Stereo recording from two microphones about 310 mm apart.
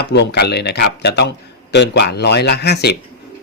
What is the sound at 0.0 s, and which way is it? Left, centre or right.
Speech, left.